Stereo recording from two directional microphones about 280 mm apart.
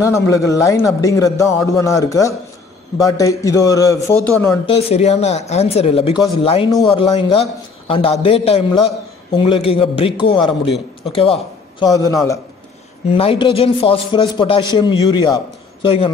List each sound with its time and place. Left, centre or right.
0.0 s a man's voice: centre
4.6 s a man's voice: left